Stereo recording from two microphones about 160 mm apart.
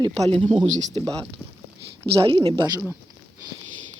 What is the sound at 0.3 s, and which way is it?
Speech, 35° right (ahead or behind).